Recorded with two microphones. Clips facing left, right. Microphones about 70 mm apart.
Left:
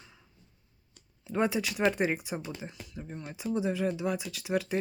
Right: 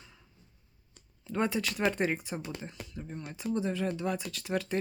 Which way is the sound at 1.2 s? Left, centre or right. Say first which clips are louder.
Left 2 dB; centre.